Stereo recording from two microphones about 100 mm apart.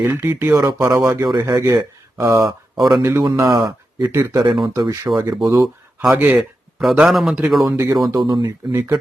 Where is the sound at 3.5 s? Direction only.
45° right (ahead or behind).